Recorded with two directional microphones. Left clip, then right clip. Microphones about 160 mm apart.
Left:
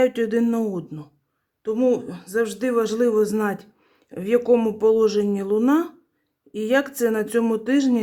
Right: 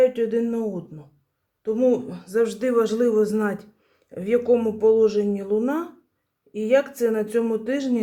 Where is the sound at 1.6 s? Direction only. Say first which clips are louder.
Even; 35° left (ahead or behind); by 5.9 s 50° left (ahead or behind).